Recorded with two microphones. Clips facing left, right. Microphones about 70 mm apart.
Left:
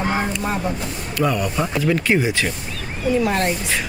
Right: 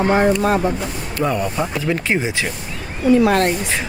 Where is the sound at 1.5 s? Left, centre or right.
Centre.